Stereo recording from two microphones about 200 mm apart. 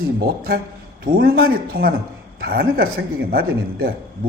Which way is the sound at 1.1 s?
50° right (ahead or behind).